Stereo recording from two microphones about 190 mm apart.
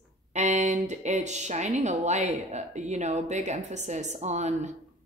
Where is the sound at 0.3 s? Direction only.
40° right (ahead or behind).